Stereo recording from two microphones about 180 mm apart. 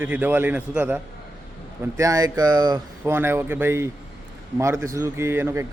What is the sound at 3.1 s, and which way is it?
Speech, 15° right (ahead or behind).